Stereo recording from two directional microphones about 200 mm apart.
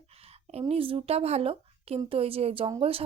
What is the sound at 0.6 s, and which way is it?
A woman's voice, 25° right (ahead or behind).